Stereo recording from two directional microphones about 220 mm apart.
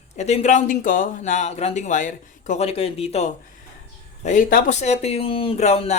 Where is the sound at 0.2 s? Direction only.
30° left (ahead or behind).